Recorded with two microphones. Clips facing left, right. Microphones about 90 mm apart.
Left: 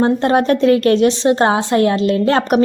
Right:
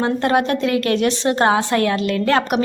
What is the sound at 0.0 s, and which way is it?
A woman's voice, 30° left (ahead or behind).